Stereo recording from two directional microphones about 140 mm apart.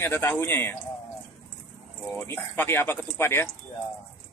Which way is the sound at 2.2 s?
15° left (ahead or behind).